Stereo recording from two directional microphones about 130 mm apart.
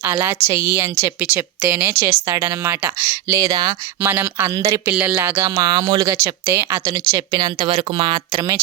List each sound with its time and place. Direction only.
0.0 s a woman's voice: 20° right (ahead or behind)
4.0 s speech: 15° right (ahead or behind)
4.9 s a woman's voice: 15° right (ahead or behind); by 6.1 s 35° right (ahead or behind)
6.1 s a woman's voice: 20° right (ahead or behind)
7.1 s speech: 30° right (ahead or behind)